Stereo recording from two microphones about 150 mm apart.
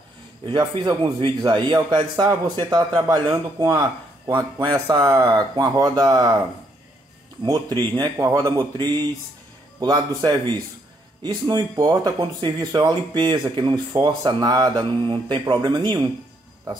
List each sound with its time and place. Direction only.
0.5 s speech: 30° right (ahead or behind)
4.3 s speech: 15° right (ahead or behind)
7.4 s speech: 25° right (ahead or behind)